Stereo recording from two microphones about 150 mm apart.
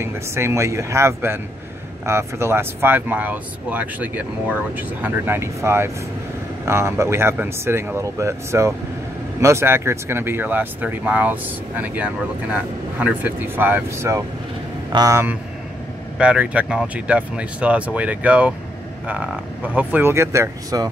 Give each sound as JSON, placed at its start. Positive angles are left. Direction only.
{"t": 0.0, "sound": "speech", "side_deg": -15}
{"t": 16.2, "sound": "speech", "side_deg": -10}